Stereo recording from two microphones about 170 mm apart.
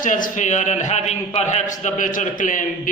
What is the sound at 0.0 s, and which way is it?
A man's voice, 50° left (ahead or behind).